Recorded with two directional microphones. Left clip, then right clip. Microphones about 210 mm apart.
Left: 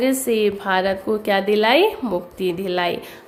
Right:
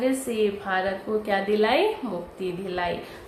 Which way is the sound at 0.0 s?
50° left (ahead or behind).